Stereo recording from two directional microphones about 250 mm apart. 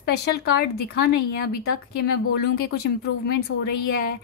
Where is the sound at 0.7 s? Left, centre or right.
Left.